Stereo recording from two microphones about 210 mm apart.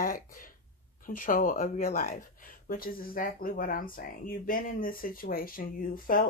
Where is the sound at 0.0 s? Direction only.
40° left (ahead or behind).